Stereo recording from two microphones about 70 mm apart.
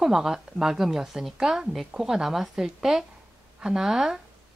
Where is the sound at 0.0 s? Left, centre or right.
Centre.